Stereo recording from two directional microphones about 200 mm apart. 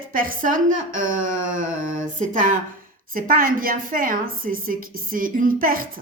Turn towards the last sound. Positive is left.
turn(degrees=-45)  # may be behind; listen again after turning